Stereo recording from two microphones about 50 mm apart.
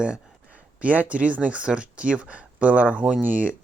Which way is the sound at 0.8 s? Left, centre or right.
Right.